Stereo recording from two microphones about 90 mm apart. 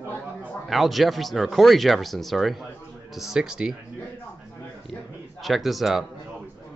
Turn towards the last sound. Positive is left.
turn(degrees=0)  # may be behind; listen again after turning